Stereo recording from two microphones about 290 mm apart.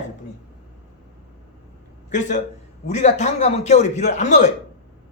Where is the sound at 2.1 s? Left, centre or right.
Left.